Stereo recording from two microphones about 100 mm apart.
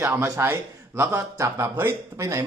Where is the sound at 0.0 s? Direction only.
30° right (ahead or behind).